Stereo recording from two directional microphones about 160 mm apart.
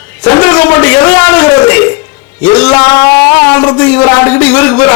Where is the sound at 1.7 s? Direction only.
10° left (ahead or behind).